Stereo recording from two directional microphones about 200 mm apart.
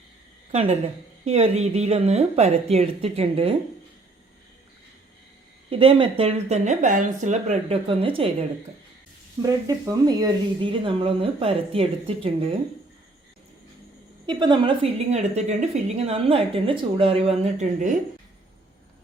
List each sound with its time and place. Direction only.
0.5 s a woman's voice: 30° right (ahead or behind)
5.7 s a woman's voice: 25° right (ahead or behind)
9.4 s a woman's voice: 15° right (ahead or behind)
14.3 s a woman's voice: 20° right (ahead or behind); by 17.9 s 35° right (ahead or behind)